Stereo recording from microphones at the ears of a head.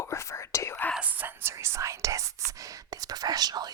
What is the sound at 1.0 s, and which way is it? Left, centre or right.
Whispering, right.